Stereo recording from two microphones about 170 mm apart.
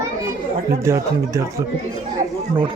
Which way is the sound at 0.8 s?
15° right (ahead or behind).